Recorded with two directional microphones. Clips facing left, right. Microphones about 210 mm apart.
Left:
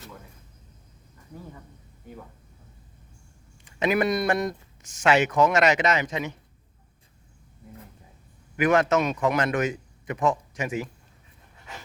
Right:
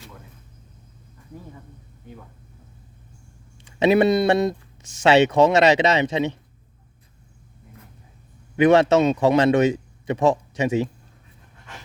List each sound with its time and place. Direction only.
3.8 s a man's voice: 25° right (ahead or behind)
8.5 s a man's voice: 25° right (ahead or behind)